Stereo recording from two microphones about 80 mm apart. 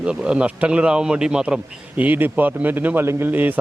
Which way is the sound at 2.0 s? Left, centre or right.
Right.